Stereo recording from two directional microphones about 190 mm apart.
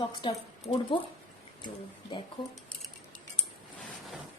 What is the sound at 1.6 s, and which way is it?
Speech, 25° left (ahead or behind).